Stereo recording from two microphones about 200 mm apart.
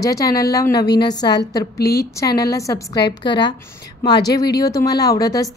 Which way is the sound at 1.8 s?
55° left (ahead or behind).